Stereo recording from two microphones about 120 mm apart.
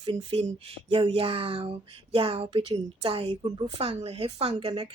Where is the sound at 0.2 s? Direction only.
60° right (ahead or behind).